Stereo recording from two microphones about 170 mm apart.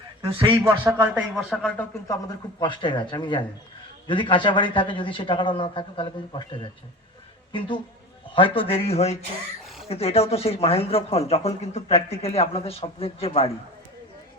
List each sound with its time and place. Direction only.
0.3 s speech: 30° right (ahead or behind)
0.6 s speech: 15° right (ahead or behind)
1.4 s a man's voice: 5° left (ahead or behind); by 6.7 s 30° left (ahead or behind)
8.4 s speech: 30° left (ahead or behind)